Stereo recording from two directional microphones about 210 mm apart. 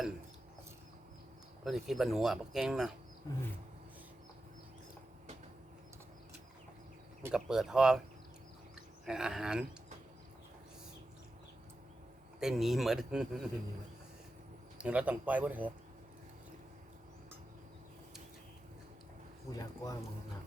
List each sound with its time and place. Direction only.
1.6 s speech: centre (ahead or behind)
7.2 s speech: 5° right (ahead or behind)
8.7 s a sound: 5° right (ahead or behind)
12.4 s speech: centre (ahead or behind)
14.8 s speech: 5° right (ahead or behind)
19.5 s speech: 15° left (ahead or behind)